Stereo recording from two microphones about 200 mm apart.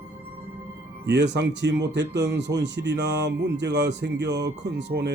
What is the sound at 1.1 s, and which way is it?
Speech, 60° right (ahead or behind).